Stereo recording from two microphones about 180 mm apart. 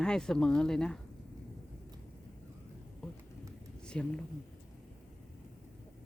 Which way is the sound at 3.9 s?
5° left (ahead or behind).